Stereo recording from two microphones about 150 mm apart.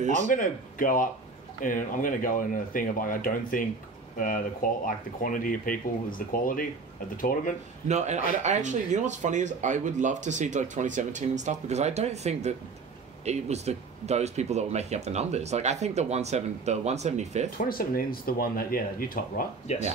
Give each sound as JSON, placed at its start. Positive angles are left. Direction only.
{"t": 0.0, "sound": "speech", "side_deg": -55}
{"t": 0.3, "sound": "speech", "side_deg": 65}
{"t": 7.9, "sound": "speech", "side_deg": -50}
{"t": 17.6, "sound": "speech", "side_deg": 75}